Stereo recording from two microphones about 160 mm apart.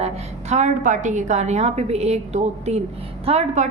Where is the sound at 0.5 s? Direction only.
50° right (ahead or behind).